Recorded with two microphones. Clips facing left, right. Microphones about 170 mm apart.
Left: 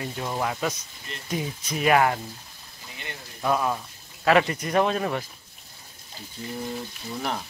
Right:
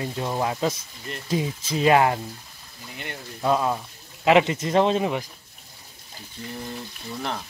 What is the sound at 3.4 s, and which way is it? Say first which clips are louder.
Speech: right 2 dB; 20° right (ahead or behind).